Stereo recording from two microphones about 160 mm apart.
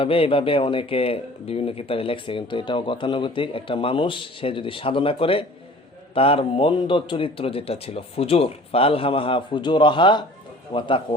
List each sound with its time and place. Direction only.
0.0 s speech: 35° left (ahead or behind)